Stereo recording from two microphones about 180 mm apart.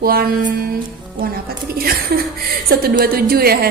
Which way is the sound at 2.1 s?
60° right (ahead or behind).